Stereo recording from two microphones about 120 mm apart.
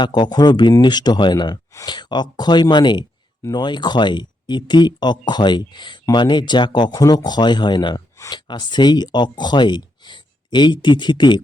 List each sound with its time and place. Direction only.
0.0 s speech: 40° left (ahead or behind)